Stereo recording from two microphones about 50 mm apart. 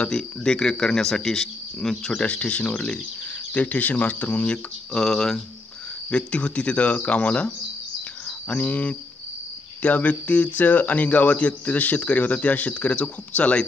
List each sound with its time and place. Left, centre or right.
0.0 s speech: centre
3.5 s speech: left
4.9 s speech: centre
6.0 s speech: left